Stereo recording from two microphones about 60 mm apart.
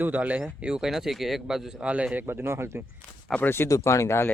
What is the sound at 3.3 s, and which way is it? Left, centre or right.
Speech, left.